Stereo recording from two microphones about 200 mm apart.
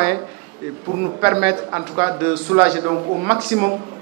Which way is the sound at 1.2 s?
10° right (ahead or behind).